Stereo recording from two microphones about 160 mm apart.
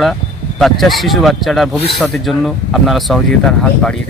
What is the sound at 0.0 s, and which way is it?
Speech, centre (ahead or behind).